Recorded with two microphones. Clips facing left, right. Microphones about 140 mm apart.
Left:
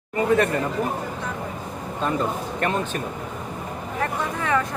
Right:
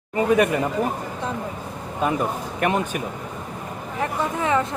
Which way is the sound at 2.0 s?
15° right (ahead or behind).